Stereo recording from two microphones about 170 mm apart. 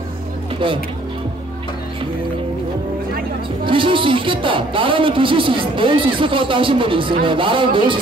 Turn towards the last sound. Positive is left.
turn(degrees=-30)  # may be behind; listen again after turning